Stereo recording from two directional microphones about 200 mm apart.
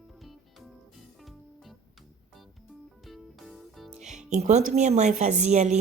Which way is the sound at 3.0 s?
Centre (ahead or behind).